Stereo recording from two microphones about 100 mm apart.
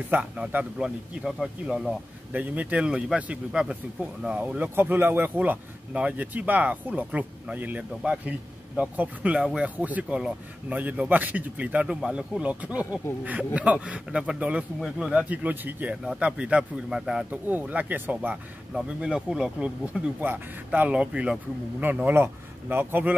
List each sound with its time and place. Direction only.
0.1 s a man's voice: 15° right (ahead or behind)
2.3 s a man's voice: 15° right (ahead or behind)
17.3 s a man's voice: 15° right (ahead or behind)